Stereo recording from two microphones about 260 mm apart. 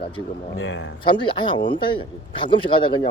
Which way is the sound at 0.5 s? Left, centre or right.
Left.